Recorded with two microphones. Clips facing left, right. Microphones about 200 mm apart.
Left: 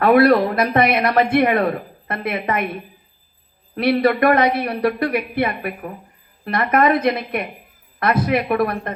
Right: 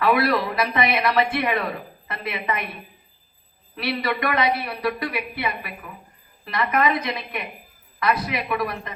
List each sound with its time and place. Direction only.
0.0 s speech: 50° left (ahead or behind)
3.8 s speech: 50° left (ahead or behind)